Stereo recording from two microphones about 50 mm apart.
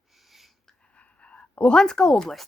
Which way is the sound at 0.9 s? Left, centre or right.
Left.